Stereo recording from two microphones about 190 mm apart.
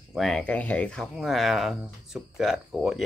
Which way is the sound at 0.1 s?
5° left (ahead or behind).